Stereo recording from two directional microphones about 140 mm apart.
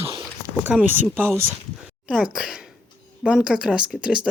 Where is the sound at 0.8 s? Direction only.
15° right (ahead or behind).